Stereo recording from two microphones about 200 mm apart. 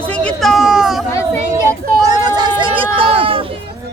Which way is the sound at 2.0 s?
20° right (ahead or behind).